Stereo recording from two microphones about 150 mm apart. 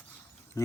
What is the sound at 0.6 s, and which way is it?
Speech, 20° left (ahead or behind).